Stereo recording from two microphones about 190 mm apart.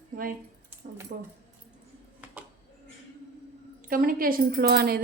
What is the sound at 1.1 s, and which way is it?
Speech, 50° right (ahead or behind).